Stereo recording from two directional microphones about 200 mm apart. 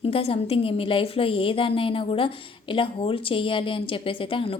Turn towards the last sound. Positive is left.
turn(degrees=25)  # may be behind; listen again after turning